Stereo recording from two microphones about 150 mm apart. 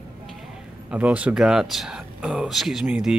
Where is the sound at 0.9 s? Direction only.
10° right (ahead or behind).